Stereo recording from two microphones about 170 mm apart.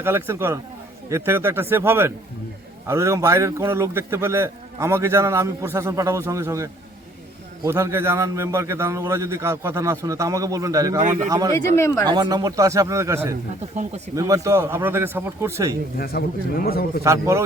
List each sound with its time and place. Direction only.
0.0 s a man's voice: 15° right (ahead or behind)
11.8 s speech: 15° left (ahead or behind)
12.0 s a man's voice: 25° right (ahead or behind)
16.0 s a man's voice: 65° left (ahead or behind)
17.0 s a man's voice: 15° right (ahead or behind)